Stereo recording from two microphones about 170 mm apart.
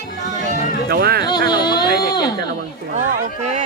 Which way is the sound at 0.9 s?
65° right (ahead or behind).